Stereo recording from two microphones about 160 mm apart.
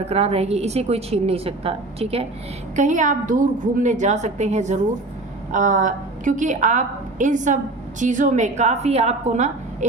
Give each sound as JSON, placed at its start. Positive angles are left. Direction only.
{"t": 0.0, "sound": "a woman's voice", "side_deg": -40}
{"t": 2.7, "sound": "a woman's voice", "side_deg": -50}